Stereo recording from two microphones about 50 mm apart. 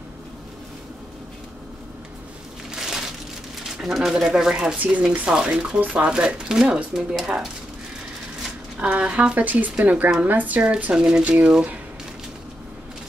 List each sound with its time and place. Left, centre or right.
2.7 s crumpling: centre
3.8 s speech: centre
4.7 s speech: right
5.1 s speech: centre
8.7 s speech: right
10.9 s speech: centre
11.2 s speech: right